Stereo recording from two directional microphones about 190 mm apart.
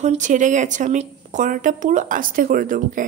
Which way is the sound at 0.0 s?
40° right (ahead or behind).